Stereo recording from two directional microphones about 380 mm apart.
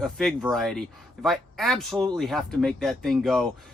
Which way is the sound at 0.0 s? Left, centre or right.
Centre.